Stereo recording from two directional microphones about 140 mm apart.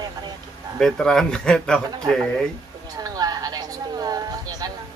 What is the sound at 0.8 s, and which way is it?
Speech, 5° left (ahead or behind).